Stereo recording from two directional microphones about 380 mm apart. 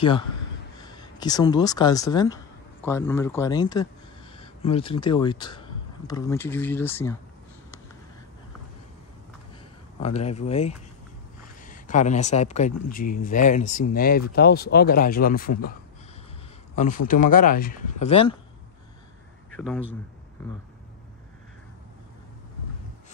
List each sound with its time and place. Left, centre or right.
0.7 s speech: centre
10.0 s speech: centre
16.7 s speech: centre
19.5 s speech: centre